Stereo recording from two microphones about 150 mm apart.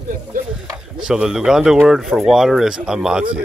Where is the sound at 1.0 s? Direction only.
5° right (ahead or behind).